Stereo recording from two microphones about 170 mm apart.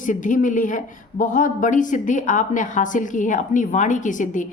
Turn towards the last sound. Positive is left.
turn(degrees=50)  # may be behind; listen again after turning